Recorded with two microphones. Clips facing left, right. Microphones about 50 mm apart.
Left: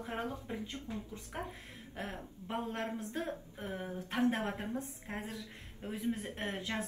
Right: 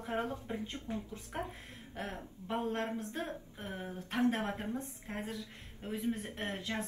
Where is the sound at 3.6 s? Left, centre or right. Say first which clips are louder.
Left 2 dB; left.